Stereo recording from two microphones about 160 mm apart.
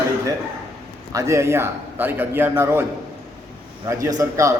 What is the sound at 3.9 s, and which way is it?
Speech, 20° right (ahead or behind).